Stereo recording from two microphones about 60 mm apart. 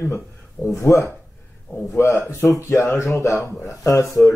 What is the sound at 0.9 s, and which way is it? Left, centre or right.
Speech, centre.